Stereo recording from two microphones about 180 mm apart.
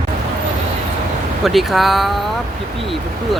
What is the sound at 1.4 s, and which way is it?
Speech, centre (ahead or behind).